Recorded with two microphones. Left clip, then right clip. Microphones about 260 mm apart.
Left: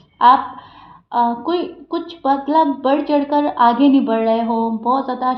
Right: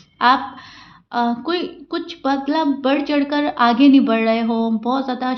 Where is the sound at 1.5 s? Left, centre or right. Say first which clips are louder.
Left 2 dB; right.